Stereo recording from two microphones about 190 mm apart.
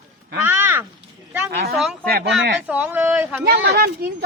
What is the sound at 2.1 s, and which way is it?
Speech, 50° right (ahead or behind).